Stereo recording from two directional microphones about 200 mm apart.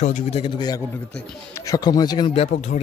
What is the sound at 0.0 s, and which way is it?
A man's voice, 35° left (ahead or behind).